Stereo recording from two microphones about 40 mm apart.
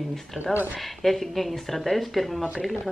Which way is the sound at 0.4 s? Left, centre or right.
Right.